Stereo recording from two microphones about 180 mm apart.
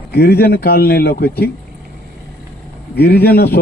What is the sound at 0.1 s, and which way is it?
Speech, 60° left (ahead or behind).